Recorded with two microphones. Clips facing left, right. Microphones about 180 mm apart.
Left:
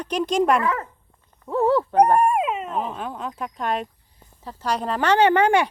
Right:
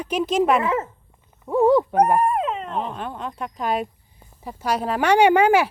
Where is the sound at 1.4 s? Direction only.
15° right (ahead or behind).